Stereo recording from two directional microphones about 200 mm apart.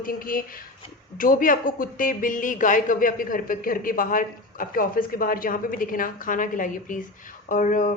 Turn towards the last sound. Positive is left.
turn(degrees=40)  # may be behind; listen again after turning